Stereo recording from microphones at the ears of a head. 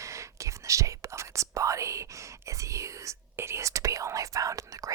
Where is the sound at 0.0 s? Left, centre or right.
Right.